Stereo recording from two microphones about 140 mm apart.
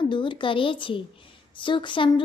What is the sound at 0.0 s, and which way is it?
Speech, 35° left (ahead or behind).